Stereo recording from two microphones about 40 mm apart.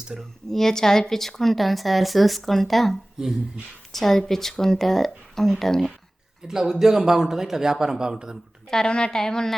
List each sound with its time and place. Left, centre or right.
0.2 s a woman's voice: centre
6.5 s a man's voice: centre
8.7 s speech: left